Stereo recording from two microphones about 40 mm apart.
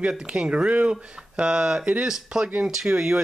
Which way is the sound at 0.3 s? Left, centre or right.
Right.